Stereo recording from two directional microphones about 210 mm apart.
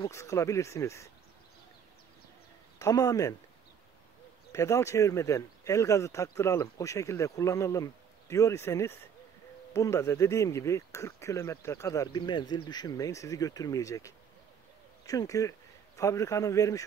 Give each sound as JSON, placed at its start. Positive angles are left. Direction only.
{"t": 0.0, "sound": "speech", "side_deg": 15}
{"t": 2.8, "sound": "speech", "side_deg": 15}
{"t": 4.5, "sound": "speech", "side_deg": 15}